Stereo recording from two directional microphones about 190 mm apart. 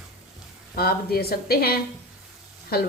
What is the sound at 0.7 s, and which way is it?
A woman's voice, 55° left (ahead or behind).